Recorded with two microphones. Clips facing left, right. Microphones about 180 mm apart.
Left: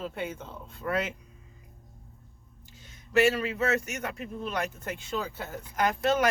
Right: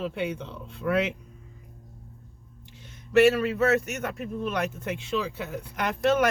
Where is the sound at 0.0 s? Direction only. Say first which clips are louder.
Right 5 dB; 70° right (ahead or behind).